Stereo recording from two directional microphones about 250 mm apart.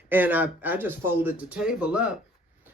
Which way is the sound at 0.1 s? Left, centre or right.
Centre.